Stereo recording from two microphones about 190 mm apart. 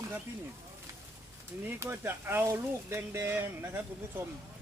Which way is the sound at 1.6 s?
10° right (ahead or behind).